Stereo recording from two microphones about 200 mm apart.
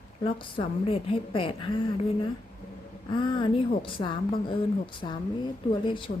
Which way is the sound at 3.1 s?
25° left (ahead or behind).